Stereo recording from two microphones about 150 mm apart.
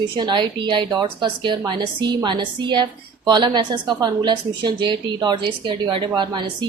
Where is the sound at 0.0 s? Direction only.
30° right (ahead or behind).